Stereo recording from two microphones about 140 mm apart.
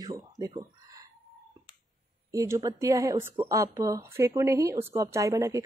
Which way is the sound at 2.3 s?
20° right (ahead or behind).